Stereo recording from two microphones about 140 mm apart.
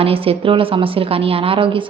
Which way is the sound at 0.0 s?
40° right (ahead or behind).